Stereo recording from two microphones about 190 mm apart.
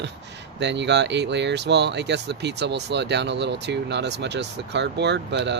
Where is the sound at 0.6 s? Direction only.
65° right (ahead or behind).